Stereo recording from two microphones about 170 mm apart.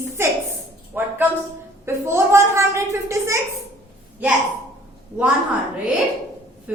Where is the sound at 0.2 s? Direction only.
15° right (ahead or behind).